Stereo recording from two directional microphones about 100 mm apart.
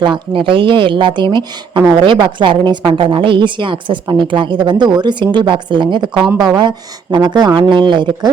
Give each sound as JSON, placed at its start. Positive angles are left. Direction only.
{"t": 0.0, "sound": "a woman's voice", "side_deg": -55}